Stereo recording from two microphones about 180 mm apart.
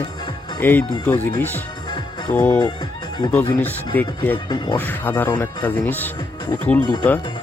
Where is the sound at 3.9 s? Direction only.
10° left (ahead or behind).